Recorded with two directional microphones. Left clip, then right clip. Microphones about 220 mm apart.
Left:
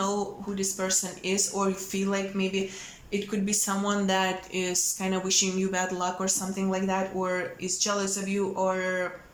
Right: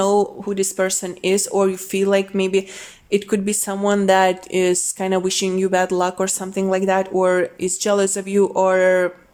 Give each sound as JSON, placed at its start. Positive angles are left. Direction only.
{"t": 0.0, "sound": "speech", "side_deg": -40}